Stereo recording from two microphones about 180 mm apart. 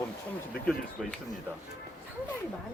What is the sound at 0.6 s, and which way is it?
Speech, 5° left (ahead or behind).